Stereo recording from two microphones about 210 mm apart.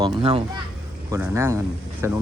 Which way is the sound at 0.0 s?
25° right (ahead or behind).